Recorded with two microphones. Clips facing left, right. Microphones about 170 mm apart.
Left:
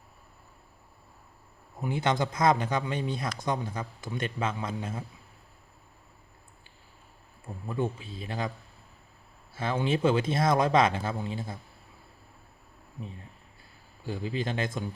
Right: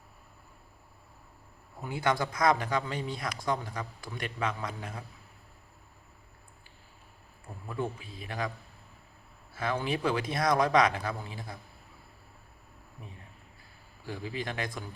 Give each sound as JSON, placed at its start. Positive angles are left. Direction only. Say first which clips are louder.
{"t": 1.8, "sound": "a man's voice", "louder": "left 2 dB", "side_deg": 20}
{"t": 7.4, "sound": "a man's voice", "louder": "left 4 dB", "side_deg": 25}
{"t": 9.6, "sound": "a man's voice", "louder": "left 4 dB", "side_deg": 25}
{"t": 14.0, "sound": "a man's voice", "louder": "left 4 dB", "side_deg": 25}